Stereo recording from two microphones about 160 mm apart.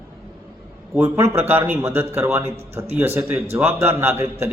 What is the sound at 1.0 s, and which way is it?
A man's voice, 15° right (ahead or behind).